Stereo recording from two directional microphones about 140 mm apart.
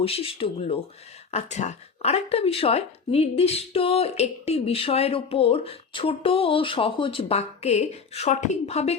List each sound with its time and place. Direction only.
0.0 s speech: 45° left (ahead or behind)